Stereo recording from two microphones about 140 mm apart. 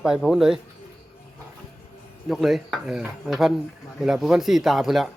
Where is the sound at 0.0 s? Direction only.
Centre (ahead or behind).